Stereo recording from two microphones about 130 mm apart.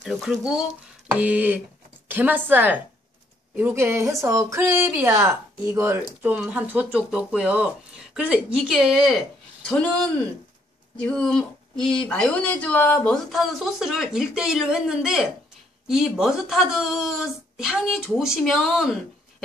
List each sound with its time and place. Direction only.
0.0 s a woman's voice: centre (ahead or behind)
11.0 s speech: 5° left (ahead or behind)